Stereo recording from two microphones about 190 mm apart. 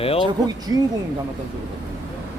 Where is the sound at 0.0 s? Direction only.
30° left (ahead or behind).